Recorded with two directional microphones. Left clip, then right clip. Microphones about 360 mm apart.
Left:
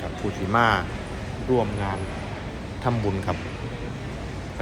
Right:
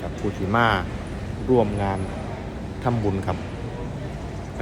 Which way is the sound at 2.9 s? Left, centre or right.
Centre.